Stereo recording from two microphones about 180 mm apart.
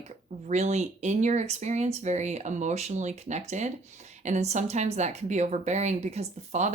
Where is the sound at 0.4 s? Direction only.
40° right (ahead or behind).